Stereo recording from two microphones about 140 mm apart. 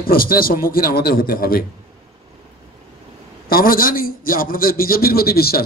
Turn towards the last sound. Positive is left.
turn(degrees=90)